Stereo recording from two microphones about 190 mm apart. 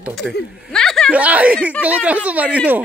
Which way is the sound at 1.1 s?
5° right (ahead or behind).